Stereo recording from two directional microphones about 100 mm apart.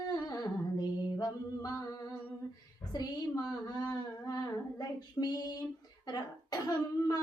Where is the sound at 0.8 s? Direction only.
45° left (ahead or behind).